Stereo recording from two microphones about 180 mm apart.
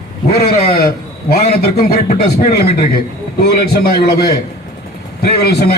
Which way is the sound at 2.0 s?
40° left (ahead or behind).